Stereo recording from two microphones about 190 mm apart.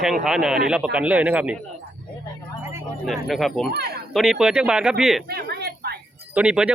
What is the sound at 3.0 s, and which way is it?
Speech, centre (ahead or behind).